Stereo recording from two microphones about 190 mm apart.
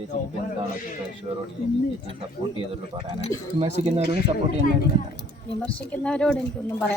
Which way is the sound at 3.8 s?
30° right (ahead or behind).